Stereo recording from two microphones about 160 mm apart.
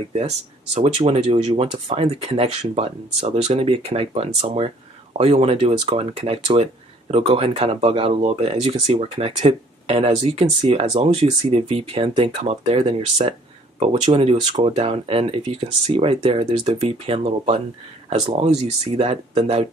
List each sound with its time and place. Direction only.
0.7 s speech: 40° right (ahead or behind)